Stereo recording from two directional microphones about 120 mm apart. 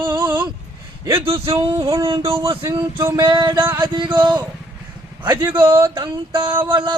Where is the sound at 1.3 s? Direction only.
50° right (ahead or behind).